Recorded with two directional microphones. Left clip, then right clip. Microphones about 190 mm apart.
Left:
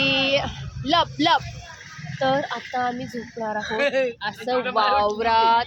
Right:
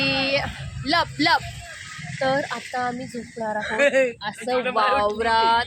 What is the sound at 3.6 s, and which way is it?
Speech, 25° right (ahead or behind).